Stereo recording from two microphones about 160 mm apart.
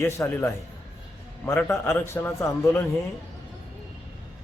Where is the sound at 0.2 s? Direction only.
15° left (ahead or behind).